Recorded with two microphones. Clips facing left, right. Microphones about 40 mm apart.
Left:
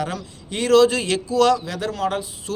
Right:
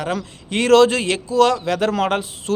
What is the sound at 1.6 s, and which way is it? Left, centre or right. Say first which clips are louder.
Speech: right 6 dB; right.